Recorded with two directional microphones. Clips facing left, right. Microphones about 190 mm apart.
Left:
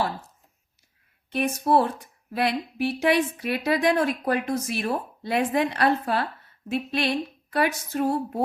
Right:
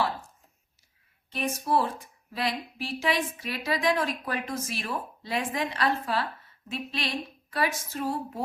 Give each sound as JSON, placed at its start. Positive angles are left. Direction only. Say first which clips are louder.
{"t": 1.3, "sound": "speech", "louder": "left 5 dB", "side_deg": 60}